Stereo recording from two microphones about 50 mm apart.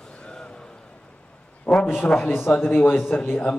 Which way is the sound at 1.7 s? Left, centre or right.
Left.